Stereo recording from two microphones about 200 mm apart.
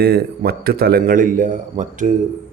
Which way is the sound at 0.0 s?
55° right (ahead or behind).